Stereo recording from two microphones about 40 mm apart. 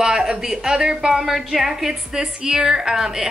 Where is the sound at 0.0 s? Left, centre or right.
Centre.